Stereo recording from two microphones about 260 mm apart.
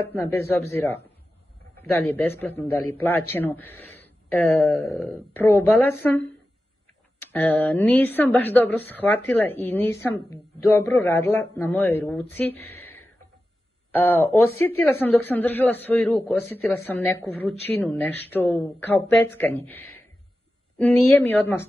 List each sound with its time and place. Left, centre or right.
0.1 s speech: centre
2.8 s a man's voice: left
3.3 s speech: centre
12.8 s a sound: left
13.9 s speech: centre